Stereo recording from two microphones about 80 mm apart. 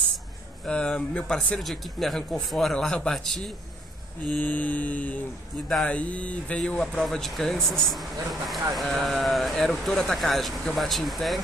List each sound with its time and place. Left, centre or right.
0.7 s speech: centre
4.4 s mantra: left
5.9 s speech: centre